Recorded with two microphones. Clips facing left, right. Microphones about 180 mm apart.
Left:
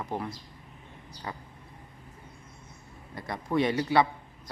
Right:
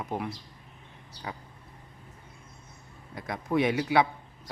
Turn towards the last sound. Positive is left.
turn(degrees=-5)  # may be behind; listen again after turning